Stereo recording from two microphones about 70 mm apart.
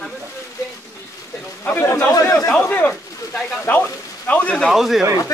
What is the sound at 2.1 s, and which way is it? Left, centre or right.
Speech, left.